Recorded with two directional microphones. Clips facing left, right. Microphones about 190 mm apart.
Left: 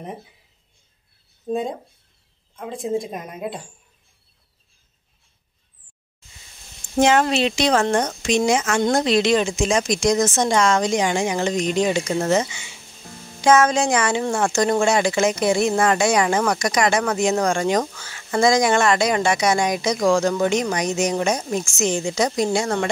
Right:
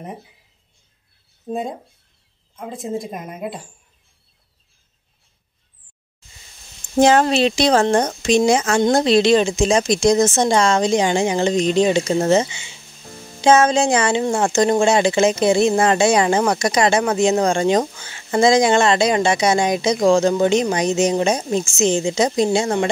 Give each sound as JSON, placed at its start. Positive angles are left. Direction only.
{"t": 1.5, "sound": "a woman's voice", "side_deg": -5}
{"t": 7.0, "sound": "speech", "side_deg": -35}